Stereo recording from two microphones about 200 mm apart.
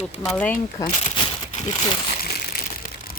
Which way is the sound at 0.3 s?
10° left (ahead or behind).